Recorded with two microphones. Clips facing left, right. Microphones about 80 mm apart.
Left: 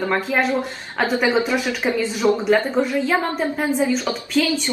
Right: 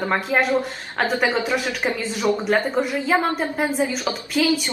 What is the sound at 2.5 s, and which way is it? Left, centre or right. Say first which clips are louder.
Speech: left 2 dB; centre.